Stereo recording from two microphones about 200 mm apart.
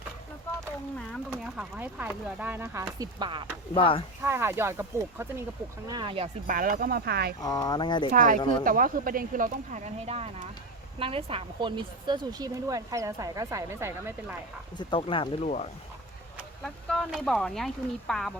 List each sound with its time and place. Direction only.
1.3 s a woman's voice: 5° right (ahead or behind); by 3.4 s 25° right (ahead or behind)
3.8 s speech: 25° left (ahead or behind)
4.2 s a woman's voice: 10° right (ahead or behind)
5.9 s speech: 25° right (ahead or behind)
6.5 s speech: 45° right (ahead or behind)
7.4 s speech: 20° left (ahead or behind)
8.1 s a woman's voice: 40° right (ahead or behind); by 14.3 s 10° right (ahead or behind)
14.8 s speech: 25° left (ahead or behind)
16.6 s speech: centre (ahead or behind)